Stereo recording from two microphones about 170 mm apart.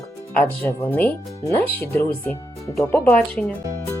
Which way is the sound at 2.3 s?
20° left (ahead or behind).